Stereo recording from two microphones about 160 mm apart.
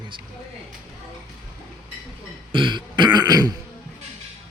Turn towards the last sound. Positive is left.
turn(degrees=-25)  # may be behind; listen again after turning